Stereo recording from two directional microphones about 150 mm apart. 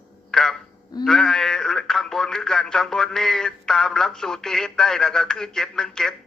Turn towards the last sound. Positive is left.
turn(degrees=5)  # may be behind; listen again after turning